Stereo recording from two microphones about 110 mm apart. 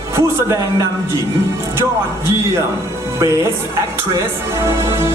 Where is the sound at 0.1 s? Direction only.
30° right (ahead or behind).